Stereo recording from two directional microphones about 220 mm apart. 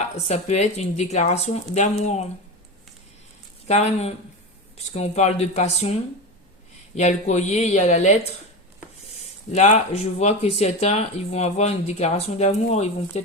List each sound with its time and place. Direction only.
0.3 s speech: 30° left (ahead or behind)
3.7 s speech: 30° left (ahead or behind)
9.5 s speech: 30° left (ahead or behind)